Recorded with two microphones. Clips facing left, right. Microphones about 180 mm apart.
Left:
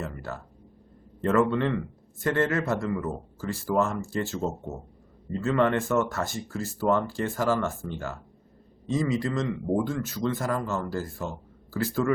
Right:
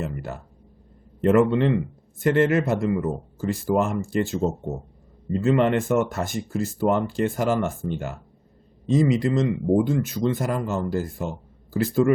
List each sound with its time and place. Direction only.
0.0 s speech: 20° right (ahead or behind)